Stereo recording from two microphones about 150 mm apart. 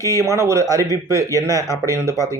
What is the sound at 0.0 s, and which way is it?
Speech, 20° right (ahead or behind).